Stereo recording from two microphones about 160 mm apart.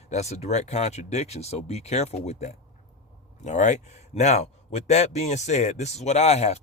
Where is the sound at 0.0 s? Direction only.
45° left (ahead or behind).